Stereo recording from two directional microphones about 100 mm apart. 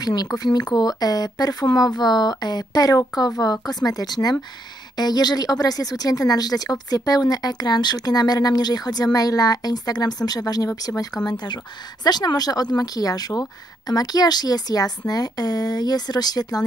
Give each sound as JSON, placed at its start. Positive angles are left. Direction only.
{"t": 0.0, "sound": "speech", "side_deg": 40}